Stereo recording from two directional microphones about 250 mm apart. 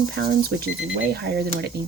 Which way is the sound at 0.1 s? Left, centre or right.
Right.